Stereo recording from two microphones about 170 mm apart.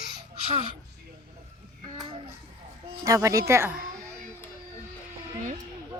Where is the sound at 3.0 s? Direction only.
20° right (ahead or behind).